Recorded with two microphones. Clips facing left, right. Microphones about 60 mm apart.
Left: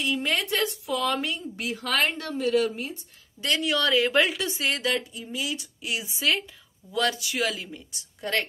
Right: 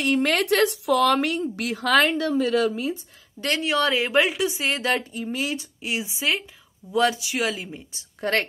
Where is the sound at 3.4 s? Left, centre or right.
Right.